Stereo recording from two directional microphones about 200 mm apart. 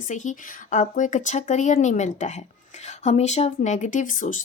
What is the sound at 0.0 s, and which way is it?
Speech, 40° left (ahead or behind).